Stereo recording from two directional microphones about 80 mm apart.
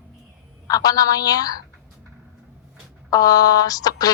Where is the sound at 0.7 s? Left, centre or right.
Left.